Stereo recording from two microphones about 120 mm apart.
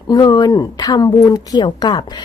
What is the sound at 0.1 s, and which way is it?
Speech, 35° left (ahead or behind).